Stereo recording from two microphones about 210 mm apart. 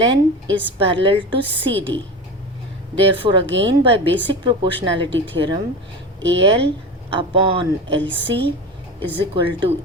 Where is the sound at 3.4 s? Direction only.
60° right (ahead or behind).